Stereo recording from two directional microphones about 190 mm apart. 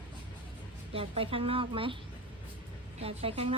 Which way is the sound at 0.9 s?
30° right (ahead or behind).